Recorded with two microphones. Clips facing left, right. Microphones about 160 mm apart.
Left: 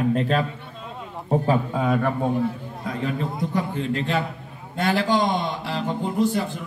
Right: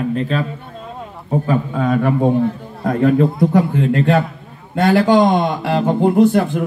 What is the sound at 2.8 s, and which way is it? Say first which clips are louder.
A man's voice: right 13 dB; 55° right (ahead or behind).